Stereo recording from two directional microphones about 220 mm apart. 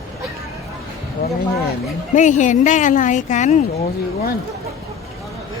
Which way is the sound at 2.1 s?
35° left (ahead or behind).